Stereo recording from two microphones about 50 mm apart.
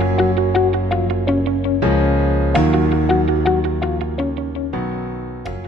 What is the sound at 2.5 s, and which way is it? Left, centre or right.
Music, centre.